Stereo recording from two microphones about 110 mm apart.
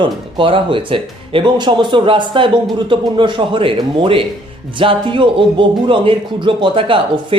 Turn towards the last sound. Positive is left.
turn(degrees=-55)  # may be behind; listen again after turning